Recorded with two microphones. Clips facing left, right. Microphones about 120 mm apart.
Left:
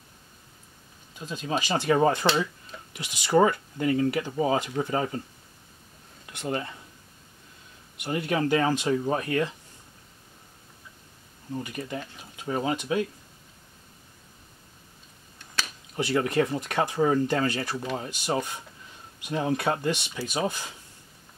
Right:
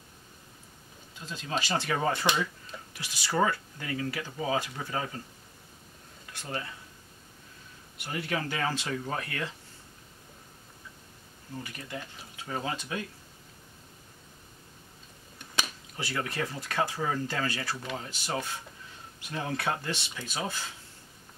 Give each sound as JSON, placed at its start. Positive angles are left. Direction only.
{"t": 1.2, "sound": "speech", "side_deg": 15}
{"t": 6.3, "sound": "speech", "side_deg": 25}
{"t": 8.3, "sound": "speech", "side_deg": 20}
{"t": 11.5, "sound": "speech", "side_deg": 20}
{"t": 16.0, "sound": "speech", "side_deg": 20}